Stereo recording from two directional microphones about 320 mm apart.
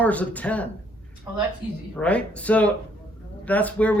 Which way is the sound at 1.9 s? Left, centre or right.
Centre.